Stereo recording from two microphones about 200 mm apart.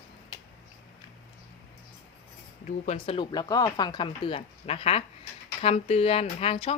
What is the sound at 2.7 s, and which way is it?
Speech, 40° left (ahead or behind).